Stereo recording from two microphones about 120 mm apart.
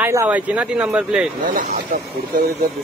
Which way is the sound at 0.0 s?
20° right (ahead or behind).